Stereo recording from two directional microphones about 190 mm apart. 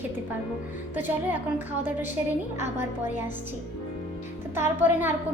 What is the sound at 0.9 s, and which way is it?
A woman's voice, 10° right (ahead or behind).